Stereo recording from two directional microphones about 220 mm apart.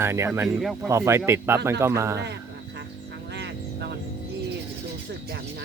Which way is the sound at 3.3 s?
50° right (ahead or behind).